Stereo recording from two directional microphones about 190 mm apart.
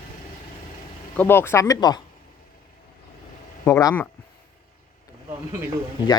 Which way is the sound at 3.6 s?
15° left (ahead or behind).